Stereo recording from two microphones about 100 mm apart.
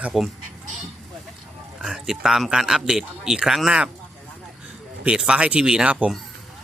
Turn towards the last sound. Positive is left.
turn(degrees=-10)  # may be behind; listen again after turning